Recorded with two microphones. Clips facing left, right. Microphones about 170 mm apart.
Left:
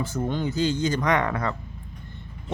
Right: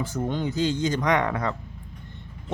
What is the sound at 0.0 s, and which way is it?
Speech, 15° right (ahead or behind).